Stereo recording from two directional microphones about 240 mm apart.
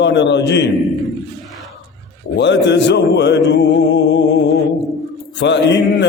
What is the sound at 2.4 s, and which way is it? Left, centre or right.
Music, left.